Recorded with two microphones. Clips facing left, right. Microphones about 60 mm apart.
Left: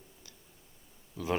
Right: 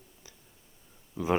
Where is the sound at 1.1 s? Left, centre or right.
Right.